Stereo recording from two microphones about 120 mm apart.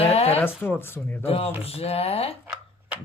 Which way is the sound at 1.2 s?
55° left (ahead or behind).